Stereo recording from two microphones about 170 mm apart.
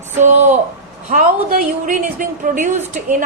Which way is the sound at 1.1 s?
55° right (ahead or behind).